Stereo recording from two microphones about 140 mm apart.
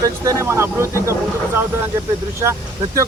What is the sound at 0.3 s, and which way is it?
Speech, 20° right (ahead or behind).